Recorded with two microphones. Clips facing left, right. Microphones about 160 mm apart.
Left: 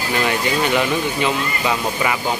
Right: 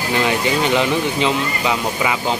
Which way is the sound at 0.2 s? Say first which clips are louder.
Right 1 dB; 20° right (ahead or behind).